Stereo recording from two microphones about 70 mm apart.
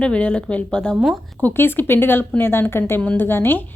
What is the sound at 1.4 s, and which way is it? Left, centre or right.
A woman's voice, left.